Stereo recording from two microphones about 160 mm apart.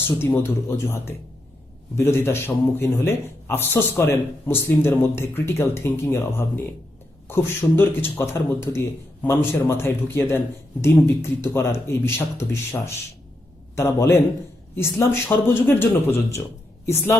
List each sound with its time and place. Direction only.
0.2 s a man's voice: 15° left (ahead or behind)